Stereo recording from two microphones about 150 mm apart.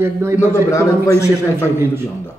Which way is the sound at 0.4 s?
20° left (ahead or behind).